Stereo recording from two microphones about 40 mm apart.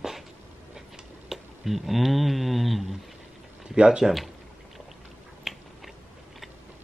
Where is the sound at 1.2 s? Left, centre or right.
Centre.